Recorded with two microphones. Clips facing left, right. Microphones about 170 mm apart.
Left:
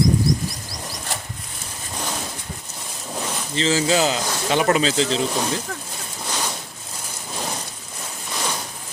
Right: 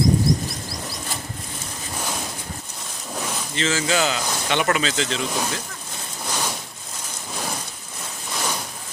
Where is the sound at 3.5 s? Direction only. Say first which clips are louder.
Left 4 dB; 30° left (ahead or behind).